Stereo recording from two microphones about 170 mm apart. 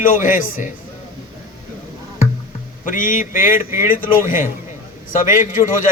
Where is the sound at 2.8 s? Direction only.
55° left (ahead or behind).